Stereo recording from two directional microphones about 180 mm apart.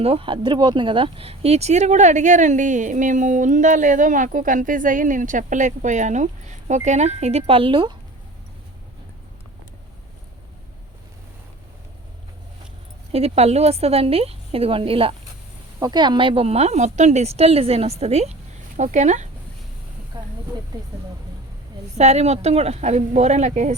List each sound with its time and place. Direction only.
0.0 s speech: 30° right (ahead or behind)
13.1 s speech: 35° right (ahead or behind)
20.1 s snake: 25° right (ahead or behind)
21.9 s speech: 40° right (ahead or behind)